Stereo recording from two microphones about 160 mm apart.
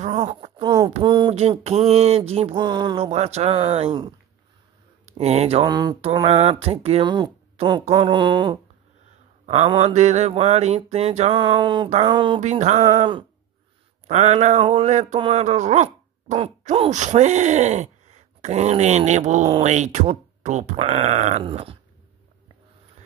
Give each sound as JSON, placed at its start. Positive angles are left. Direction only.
{"t": 0.0, "sound": "a sound", "side_deg": -45}
{"t": 0.6, "sound": "a sound", "side_deg": -25}
{"t": 1.9, "sound": "mantra", "side_deg": -40}
{"t": 2.5, "sound": "speech", "side_deg": -25}
{"t": 3.0, "sound": "mantra", "side_deg": -40}
{"t": 5.0, "sound": "speech", "side_deg": -45}
{"t": 5.7, "sound": "speech", "side_deg": -25}
{"t": 5.9, "sound": "mantra", "side_deg": -35}
{"t": 7.5, "sound": "speech", "side_deg": -30}
{"t": 9.7, "sound": "mantra", "side_deg": -40}
{"t": 12.4, "sound": "speech", "side_deg": -50}
{"t": 14.0, "sound": "speech", "side_deg": -45}
{"t": 20.7, "sound": "mantra", "side_deg": -40}